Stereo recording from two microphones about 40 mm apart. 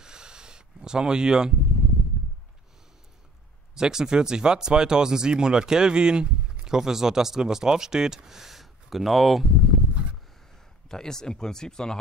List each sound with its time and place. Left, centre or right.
0.0 s a sound: centre
3.7 s speech: centre
10.9 s speech: centre